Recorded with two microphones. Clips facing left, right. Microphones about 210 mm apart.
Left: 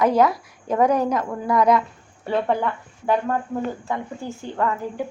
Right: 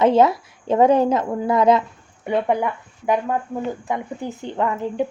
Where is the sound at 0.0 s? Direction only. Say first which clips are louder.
Right 3 dB; 25° right (ahead or behind).